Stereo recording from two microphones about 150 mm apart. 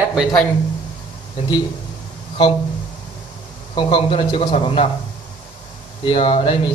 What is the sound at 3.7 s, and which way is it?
Speech, 30° left (ahead or behind).